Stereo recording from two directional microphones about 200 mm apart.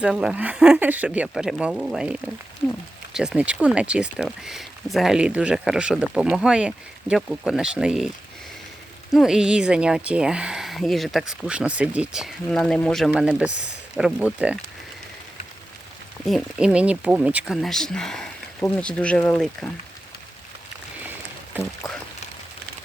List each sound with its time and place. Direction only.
0.0 s speech: 5° right (ahead or behind)
9.1 s speech: centre (ahead or behind)
16.2 s speech: centre (ahead or behind)
21.8 s a sound: 20° left (ahead or behind)